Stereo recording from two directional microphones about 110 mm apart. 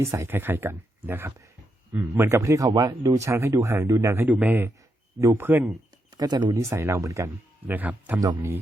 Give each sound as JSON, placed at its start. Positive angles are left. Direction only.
{"t": 0.0, "sound": "speech", "side_deg": -25}
{"t": 6.1, "sound": "speech", "side_deg": -35}
{"t": 7.7, "sound": "speech", "side_deg": -15}